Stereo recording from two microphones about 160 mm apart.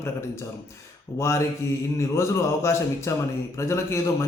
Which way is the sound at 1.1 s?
15° left (ahead or behind).